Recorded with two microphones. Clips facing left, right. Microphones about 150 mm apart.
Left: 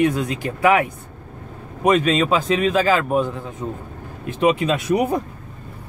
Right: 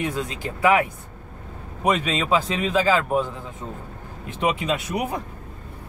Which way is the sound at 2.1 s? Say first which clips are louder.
Left 4 dB; 15° left (ahead or behind).